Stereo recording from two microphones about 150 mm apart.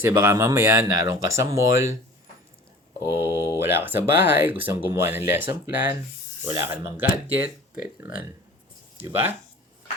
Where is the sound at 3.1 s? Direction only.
15° right (ahead or behind).